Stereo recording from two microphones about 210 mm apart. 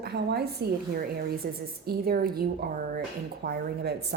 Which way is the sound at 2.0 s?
45° right (ahead or behind).